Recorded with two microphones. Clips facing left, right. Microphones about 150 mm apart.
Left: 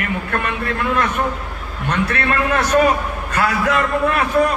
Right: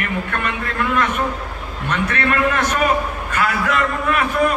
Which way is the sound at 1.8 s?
35° left (ahead or behind).